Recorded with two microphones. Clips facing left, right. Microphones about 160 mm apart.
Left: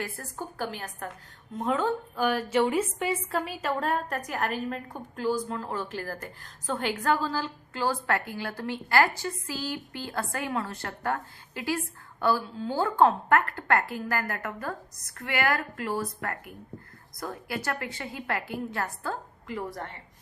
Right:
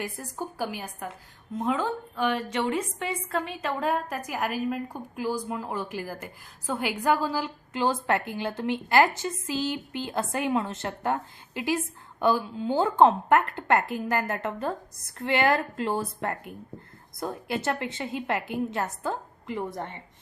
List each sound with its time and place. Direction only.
0.0 s a woman's voice: 15° right (ahead or behind)